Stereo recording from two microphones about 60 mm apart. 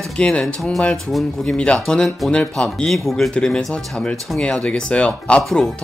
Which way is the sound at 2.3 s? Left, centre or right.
Centre.